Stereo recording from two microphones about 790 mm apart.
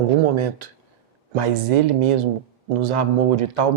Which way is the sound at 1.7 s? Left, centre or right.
Right.